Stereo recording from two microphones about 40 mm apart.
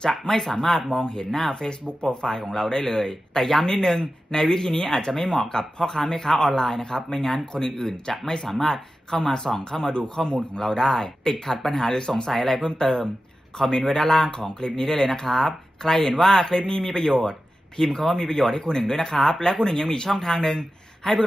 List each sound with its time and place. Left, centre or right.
0.0 s speech: centre